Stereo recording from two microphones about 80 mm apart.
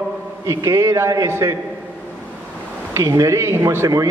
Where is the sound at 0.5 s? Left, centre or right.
Right.